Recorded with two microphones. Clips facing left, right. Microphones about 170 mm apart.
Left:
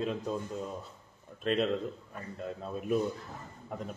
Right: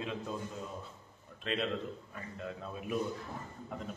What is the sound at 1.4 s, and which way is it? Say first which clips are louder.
Speech: left 6 dB; 45° left (ahead or behind).